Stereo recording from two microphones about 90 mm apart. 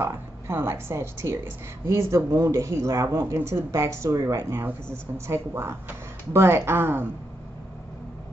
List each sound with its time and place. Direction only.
0.0 s a woman's voice: 30° right (ahead or behind)
4.4 s speech: 25° right (ahead or behind)